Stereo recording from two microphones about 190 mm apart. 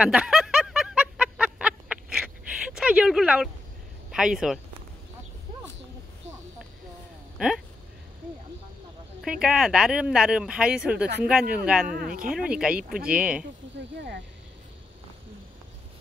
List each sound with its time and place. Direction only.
0.0 s snicker: 5° right (ahead or behind)
4.1 s speech: 5° right (ahead or behind)
7.3 s speech: 5° right (ahead or behind)
9.2 s speech: 5° right (ahead or behind)
11.9 s speech: 50° right (ahead or behind)
12.3 s speech: 5° right (ahead or behind)
13.7 s speech: 60° right (ahead or behind)